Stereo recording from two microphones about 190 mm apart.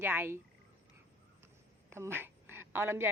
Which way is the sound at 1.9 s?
15° right (ahead or behind).